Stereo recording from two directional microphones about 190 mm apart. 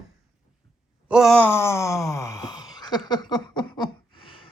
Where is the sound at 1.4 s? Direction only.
15° left (ahead or behind).